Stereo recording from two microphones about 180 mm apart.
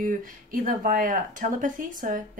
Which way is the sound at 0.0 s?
50° right (ahead or behind).